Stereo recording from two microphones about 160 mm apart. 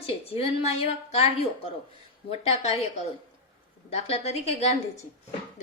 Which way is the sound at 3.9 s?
40° left (ahead or behind).